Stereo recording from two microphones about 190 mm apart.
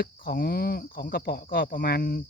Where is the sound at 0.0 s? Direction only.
55° left (ahead or behind).